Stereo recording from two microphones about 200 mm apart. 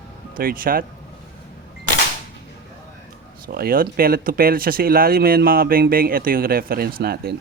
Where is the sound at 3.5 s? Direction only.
50° right (ahead or behind).